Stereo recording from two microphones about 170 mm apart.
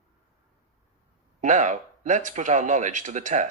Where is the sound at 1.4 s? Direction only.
45° right (ahead or behind).